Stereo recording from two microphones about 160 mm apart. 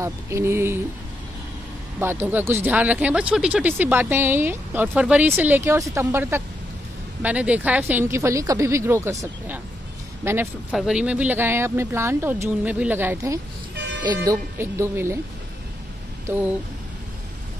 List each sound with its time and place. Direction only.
0.0 s speech: 15° right (ahead or behind)
2.0 s speech: 15° right (ahead or behind)